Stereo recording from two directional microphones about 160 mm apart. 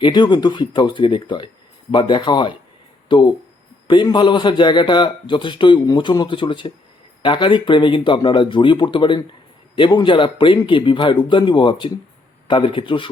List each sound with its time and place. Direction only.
0.0 s a man's voice: 25° left (ahead or behind)